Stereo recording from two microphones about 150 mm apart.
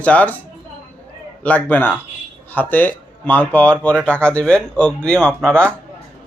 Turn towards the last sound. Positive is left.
turn(degrees=5)  # may be behind; listen again after turning